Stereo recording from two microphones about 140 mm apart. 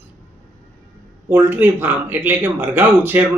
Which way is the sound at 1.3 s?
15° right (ahead or behind).